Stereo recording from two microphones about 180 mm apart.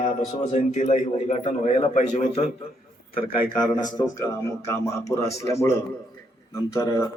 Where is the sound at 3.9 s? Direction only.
20° left (ahead or behind).